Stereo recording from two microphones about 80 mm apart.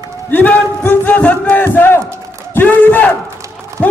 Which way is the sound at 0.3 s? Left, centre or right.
Centre.